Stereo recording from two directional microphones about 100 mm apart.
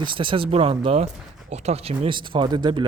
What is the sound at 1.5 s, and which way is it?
Speech, 90° right.